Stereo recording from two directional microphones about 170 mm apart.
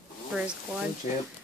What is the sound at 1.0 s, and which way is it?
Speech, 45° left (ahead or behind).